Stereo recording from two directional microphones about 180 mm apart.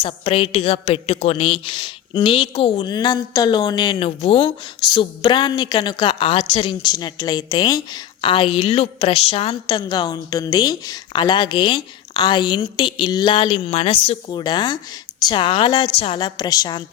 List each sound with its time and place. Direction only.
0.0 s a woman's voice: 30° left (ahead or behind)